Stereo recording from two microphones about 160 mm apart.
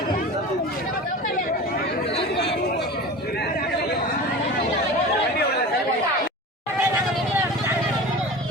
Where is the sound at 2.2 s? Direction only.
90° left.